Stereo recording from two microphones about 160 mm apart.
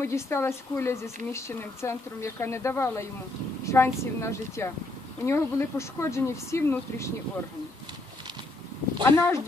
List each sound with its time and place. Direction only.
0.0 s speech: 15° left (ahead or behind)
9.0 s speech: 15° left (ahead or behind)